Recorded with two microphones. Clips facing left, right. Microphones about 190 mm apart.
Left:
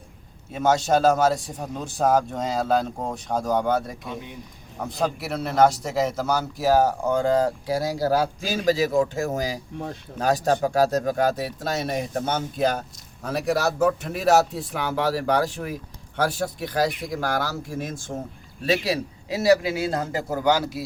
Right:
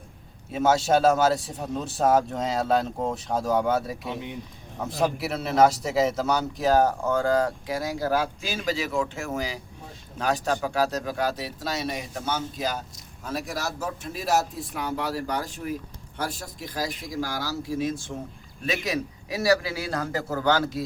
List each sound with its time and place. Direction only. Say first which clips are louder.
0.5 s speech: left 1 dB; 5° right (ahead or behind); by 9.6 s 40° left (ahead or behind)
9.7 s a man's voice: left 12 dB; 70° left (ahead or behind)
10.2 s a man's voice: left 4 dB; 40° left (ahead or behind)
18.6 s speech: left 4 dB; 35° left (ahead or behind); by 20.8 s 10° left (ahead or behind)